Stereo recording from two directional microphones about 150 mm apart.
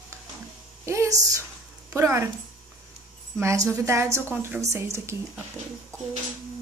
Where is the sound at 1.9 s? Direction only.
20° right (ahead or behind).